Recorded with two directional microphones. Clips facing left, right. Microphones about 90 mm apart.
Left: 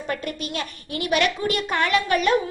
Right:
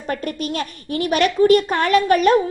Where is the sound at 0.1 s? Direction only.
40° right (ahead or behind).